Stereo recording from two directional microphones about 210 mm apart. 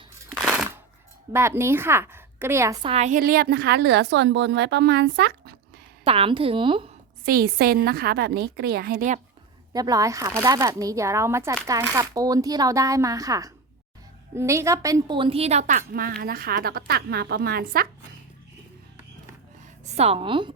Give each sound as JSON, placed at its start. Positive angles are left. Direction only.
{"t": 0.3, "sound": "a sound", "side_deg": 0}
{"t": 1.3, "sound": "a woman's voice", "side_deg": -10}
{"t": 6.1, "sound": "speech", "side_deg": -25}
{"t": 7.3, "sound": "a woman's voice", "side_deg": -45}
{"t": 9.7, "sound": "a woman's voice", "side_deg": -15}
{"t": 19.8, "sound": "a woman's voice", "side_deg": -30}